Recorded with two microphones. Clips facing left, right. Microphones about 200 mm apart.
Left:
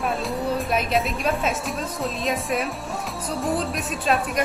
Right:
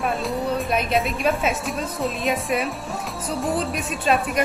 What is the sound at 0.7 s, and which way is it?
Speech, centre (ahead or behind).